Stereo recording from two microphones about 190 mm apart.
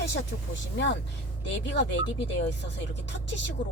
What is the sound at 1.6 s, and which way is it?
A woman's voice, 65° left (ahead or behind).